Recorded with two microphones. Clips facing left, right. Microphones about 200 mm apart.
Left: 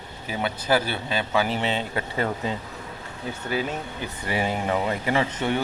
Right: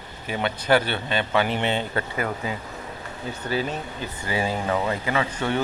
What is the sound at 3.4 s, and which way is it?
Speech, 15° left (ahead or behind).